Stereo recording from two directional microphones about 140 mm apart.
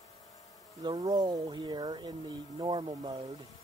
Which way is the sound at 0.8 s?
30° right (ahead or behind).